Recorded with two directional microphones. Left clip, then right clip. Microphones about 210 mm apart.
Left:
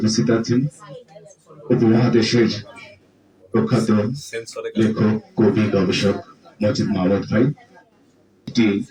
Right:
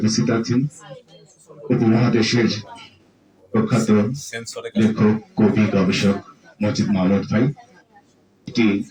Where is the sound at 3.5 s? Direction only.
15° left (ahead or behind).